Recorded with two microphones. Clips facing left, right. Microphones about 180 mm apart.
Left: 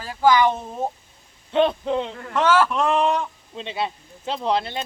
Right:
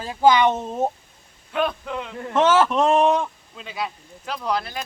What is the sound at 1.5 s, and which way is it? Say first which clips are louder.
Speech: left 5 dB; 25° left (ahead or behind).